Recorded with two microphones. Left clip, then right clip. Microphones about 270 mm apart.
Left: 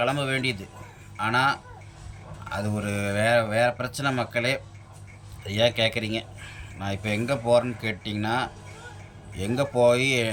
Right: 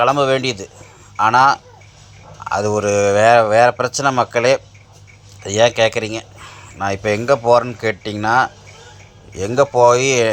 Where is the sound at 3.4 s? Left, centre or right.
Right.